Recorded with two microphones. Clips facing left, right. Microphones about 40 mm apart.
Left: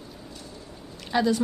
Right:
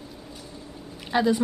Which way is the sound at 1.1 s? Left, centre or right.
Centre.